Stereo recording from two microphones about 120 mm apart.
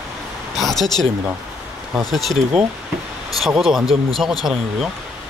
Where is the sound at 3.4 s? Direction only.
5° right (ahead or behind).